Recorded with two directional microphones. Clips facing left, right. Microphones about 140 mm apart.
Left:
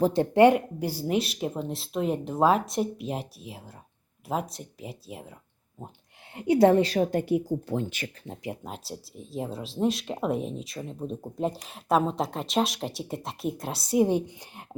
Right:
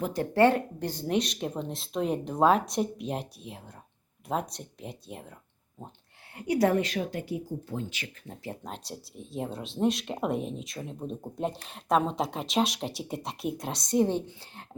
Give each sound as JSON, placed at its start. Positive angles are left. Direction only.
{"t": 0.0, "sound": "speech", "side_deg": 25}
{"t": 6.3, "sound": "a woman's voice", "side_deg": 25}
{"t": 7.1, "sound": "speech", "side_deg": 55}
{"t": 8.6, "sound": "speech", "side_deg": 5}